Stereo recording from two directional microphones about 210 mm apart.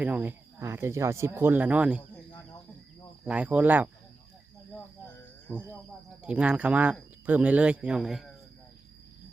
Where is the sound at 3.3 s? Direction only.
5° right (ahead or behind).